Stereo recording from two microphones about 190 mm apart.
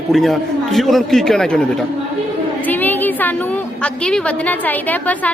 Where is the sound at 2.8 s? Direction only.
10° left (ahead or behind).